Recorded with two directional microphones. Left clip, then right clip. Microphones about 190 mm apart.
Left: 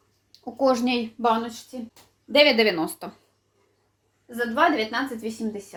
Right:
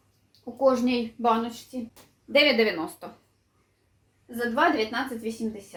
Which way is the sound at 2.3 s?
50° left (ahead or behind).